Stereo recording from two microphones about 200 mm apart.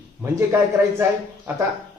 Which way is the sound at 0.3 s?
10° right (ahead or behind).